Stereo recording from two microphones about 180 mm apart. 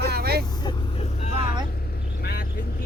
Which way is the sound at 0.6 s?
35° left (ahead or behind).